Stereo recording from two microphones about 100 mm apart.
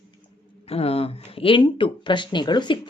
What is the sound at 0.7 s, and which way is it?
Speech, 80° left.